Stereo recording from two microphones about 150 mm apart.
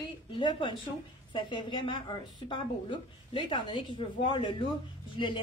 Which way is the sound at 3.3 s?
35° left (ahead or behind).